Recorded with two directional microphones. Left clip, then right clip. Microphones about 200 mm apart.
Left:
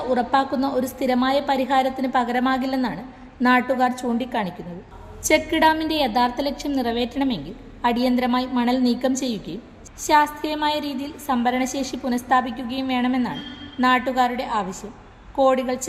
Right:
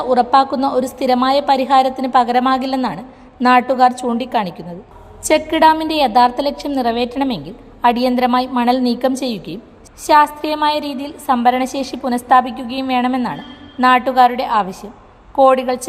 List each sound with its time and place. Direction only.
0.0 s a woman's voice: 20° right (ahead or behind)